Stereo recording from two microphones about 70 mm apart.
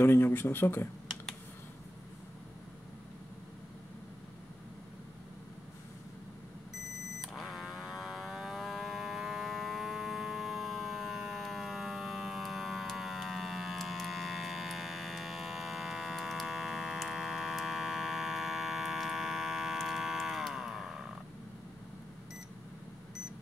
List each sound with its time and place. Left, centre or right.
0.0 s speech: left
7.2 s livestock: centre